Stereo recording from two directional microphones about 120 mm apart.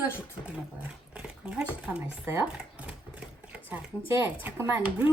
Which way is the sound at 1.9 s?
10° right (ahead or behind).